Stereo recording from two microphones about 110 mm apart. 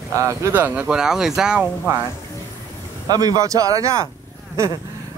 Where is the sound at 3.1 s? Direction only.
35° right (ahead or behind).